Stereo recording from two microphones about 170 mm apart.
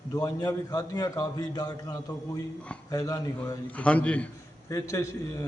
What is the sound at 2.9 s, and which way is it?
Speech, 20° left (ahead or behind).